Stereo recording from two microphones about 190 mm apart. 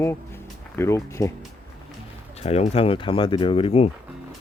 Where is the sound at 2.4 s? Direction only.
35° left (ahead or behind).